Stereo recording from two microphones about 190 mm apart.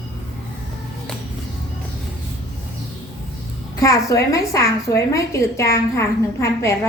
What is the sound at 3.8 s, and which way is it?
A woman's voice, 15° left (ahead or behind).